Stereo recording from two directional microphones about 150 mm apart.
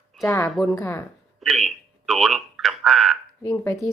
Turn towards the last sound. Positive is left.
turn(degrees=20)  # may be behind; listen again after turning